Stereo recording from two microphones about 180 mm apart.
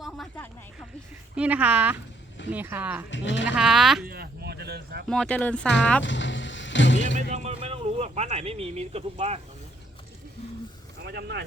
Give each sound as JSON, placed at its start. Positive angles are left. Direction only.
{"t": 1.4, "sound": "speech", "side_deg": -5}
{"t": 3.1, "sound": "speech", "side_deg": 90}
{"t": 3.4, "sound": "speech", "side_deg": -5}
{"t": 4.0, "sound": "a sound", "side_deg": -60}
{"t": 5.0, "sound": "speech", "side_deg": 5}
{"t": 6.0, "sound": "vehicle", "side_deg": 90}
{"t": 7.2, "sound": "speech", "side_deg": -40}
{"t": 11.0, "sound": "speech", "side_deg": -65}